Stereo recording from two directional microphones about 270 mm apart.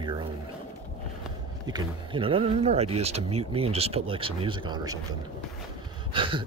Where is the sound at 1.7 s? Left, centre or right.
Centre.